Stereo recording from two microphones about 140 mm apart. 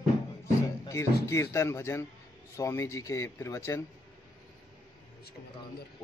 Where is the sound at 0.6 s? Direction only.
20° left (ahead or behind).